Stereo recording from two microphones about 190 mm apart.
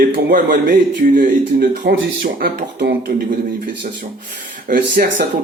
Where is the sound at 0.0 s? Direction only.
45° right (ahead or behind).